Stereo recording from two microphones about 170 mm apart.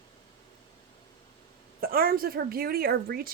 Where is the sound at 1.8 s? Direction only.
60° right (ahead or behind).